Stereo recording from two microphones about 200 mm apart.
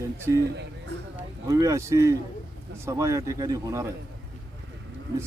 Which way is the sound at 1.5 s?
15° right (ahead or behind).